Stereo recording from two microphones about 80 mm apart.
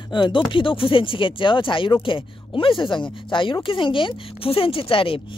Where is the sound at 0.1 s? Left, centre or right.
Left.